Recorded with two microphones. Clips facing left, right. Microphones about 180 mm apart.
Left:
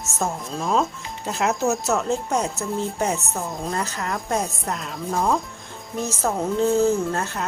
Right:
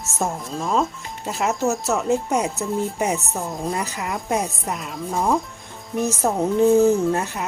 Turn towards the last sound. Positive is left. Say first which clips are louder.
# right 3 dB
turn(degrees=-15)  # may be behind; listen again after turning